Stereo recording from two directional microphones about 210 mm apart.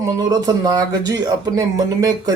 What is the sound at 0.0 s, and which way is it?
Speech, 15° right (ahead or behind).